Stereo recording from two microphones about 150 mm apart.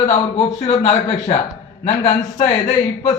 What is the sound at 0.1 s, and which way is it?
Speech, 45° left (ahead or behind).